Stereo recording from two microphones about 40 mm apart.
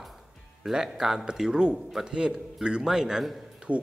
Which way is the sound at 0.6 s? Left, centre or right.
Centre.